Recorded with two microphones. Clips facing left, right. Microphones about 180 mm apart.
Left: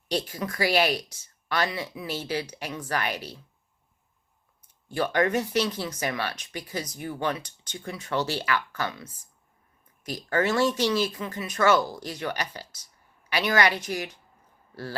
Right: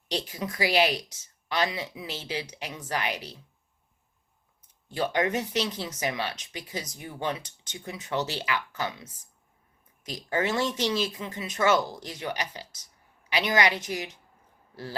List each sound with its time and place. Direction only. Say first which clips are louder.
0.3 s speech: left 2 dB; 20° right (ahead or behind)
4.9 s speech: left 2 dB; 20° right (ahead or behind)